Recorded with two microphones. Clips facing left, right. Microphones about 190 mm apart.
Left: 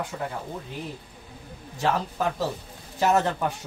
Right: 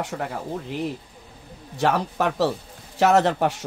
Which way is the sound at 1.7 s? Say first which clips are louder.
Right 4 dB; 70° right (ahead or behind).